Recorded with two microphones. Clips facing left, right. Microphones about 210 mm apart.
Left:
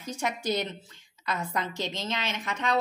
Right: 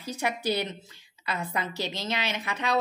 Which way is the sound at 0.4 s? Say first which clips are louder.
Right 1 dB; 10° right (ahead or behind).